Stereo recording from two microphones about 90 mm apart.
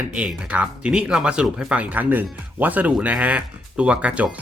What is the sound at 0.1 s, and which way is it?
Speech, 10° right (ahead or behind).